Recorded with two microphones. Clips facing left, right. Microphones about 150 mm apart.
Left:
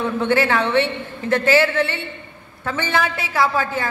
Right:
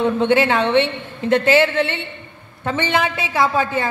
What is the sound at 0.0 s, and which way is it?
A woman's voice, 20° right (ahead or behind).